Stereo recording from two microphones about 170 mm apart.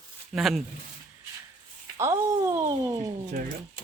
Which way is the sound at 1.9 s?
15° right (ahead or behind).